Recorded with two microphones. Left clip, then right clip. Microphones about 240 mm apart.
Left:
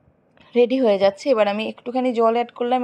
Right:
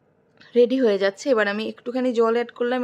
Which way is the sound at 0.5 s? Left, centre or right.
Centre.